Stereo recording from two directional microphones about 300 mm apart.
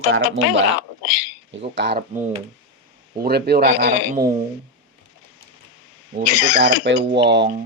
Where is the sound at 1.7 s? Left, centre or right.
Right.